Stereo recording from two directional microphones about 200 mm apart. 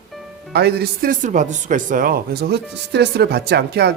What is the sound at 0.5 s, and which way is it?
Speech, 55° right (ahead or behind).